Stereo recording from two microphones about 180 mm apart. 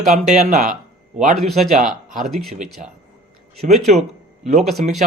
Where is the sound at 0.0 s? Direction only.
40° right (ahead or behind).